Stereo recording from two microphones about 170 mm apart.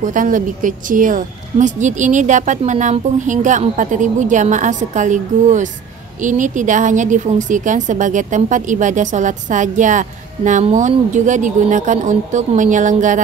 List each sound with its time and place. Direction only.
0.0 s a woman's voice: 50° right (ahead or behind)